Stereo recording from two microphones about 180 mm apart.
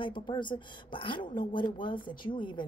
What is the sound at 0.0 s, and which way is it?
Speech, 25° left (ahead or behind).